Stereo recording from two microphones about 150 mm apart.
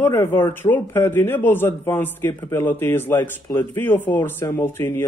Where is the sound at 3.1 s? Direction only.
30° left (ahead or behind).